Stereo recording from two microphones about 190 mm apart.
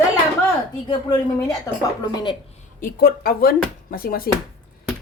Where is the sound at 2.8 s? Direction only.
50° left (ahead or behind).